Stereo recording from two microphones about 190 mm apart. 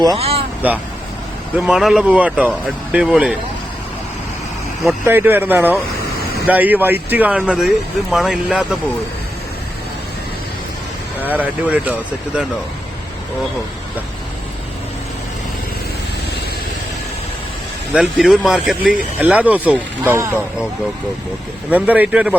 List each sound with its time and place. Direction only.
0.2 s vehicle: 30° right (ahead or behind)
0.6 s speech: 5° right (ahead or behind)
5.0 s speech: 10° right (ahead or behind)
11.2 s speech: 10° right (ahead or behind)
17.9 s speech: centre (ahead or behind)
21.7 s speech: 10° right (ahead or behind)